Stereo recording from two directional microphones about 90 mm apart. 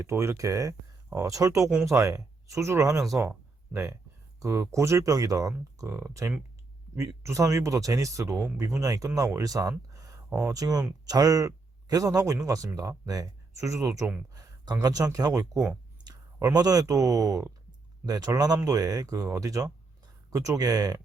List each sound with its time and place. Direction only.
0.0 s speech: 30° right (ahead or behind)
14.3 s speech: 45° right (ahead or behind)